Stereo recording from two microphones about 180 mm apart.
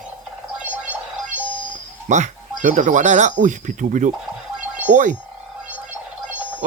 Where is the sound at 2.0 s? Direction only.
40° right (ahead or behind).